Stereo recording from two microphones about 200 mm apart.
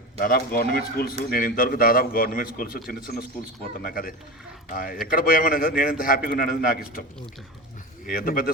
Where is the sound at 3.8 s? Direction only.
45° left (ahead or behind).